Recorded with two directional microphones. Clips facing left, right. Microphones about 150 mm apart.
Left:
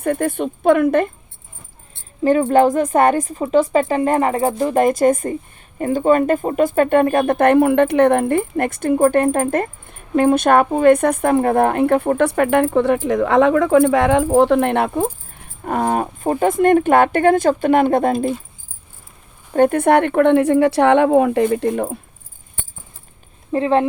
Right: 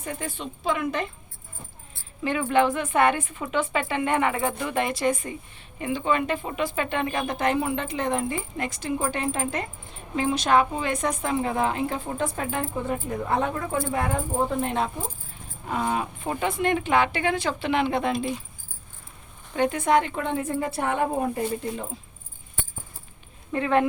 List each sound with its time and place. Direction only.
0.0 s speech: 55° left (ahead or behind)
2.2 s speech: 40° left (ahead or behind)
19.5 s speech: 55° left (ahead or behind); by 21.4 s 90° left
21.4 s speech: 60° left (ahead or behind)
23.5 s speech: 30° left (ahead or behind)